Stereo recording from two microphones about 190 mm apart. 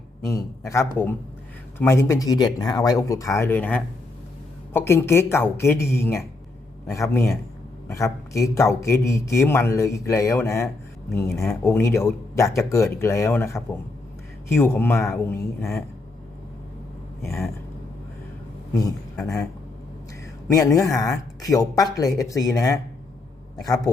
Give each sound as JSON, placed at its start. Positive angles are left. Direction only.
{"t": 0.3, "sound": "a man's voice", "side_deg": 15}
{"t": 7.9, "sound": "a man's voice", "side_deg": 15}
{"t": 18.7, "sound": "a man's voice", "side_deg": 15}
{"t": 20.5, "sound": "a man's voice", "side_deg": 15}